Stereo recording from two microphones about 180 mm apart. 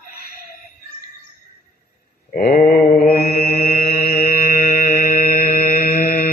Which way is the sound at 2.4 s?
45° left (ahead or behind).